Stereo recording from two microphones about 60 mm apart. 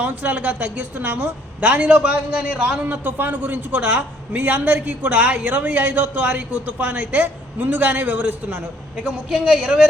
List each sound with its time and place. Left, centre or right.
0.0 s a man's voice: right
2.8 s a man's voice: right
9.3 s a woman's voice: centre